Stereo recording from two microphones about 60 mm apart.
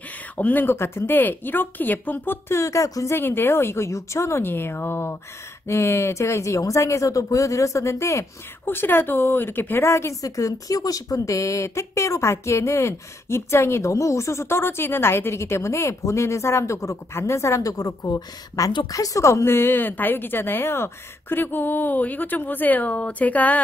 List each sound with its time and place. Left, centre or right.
0.4 s speech: left
0.7 s speech: left
3.2 s speech: left
8.6 s speech: left
10.2 s speech: left
21.4 s speech: left